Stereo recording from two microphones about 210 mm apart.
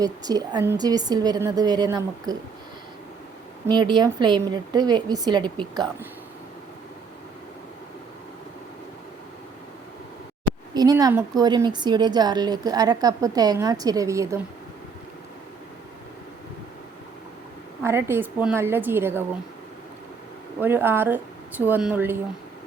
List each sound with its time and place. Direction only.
0.0 s a woman's voice: 15° right (ahead or behind)
3.7 s a woman's voice: 20° right (ahead or behind)
10.8 s a woman's voice: 20° right (ahead or behind)
17.8 s a woman's voice: 10° right (ahead or behind)
20.6 s a woman's voice: 10° right (ahead or behind)